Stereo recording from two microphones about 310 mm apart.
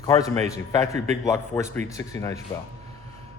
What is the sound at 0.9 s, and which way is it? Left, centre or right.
Speech, right.